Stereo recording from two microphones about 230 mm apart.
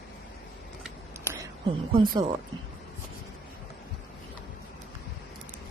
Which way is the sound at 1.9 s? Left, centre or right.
Right.